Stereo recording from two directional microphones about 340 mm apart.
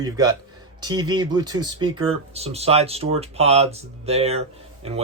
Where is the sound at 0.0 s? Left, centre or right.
Centre.